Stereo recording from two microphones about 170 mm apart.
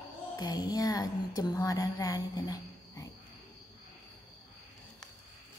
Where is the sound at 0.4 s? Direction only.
25° left (ahead or behind).